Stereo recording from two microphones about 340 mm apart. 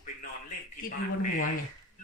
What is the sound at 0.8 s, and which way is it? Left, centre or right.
Speech, left.